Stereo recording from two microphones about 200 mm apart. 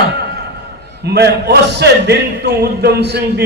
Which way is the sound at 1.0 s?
55° right (ahead or behind).